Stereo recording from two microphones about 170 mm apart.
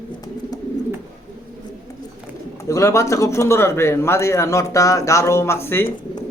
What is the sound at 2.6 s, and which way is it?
Speech, 15° left (ahead or behind).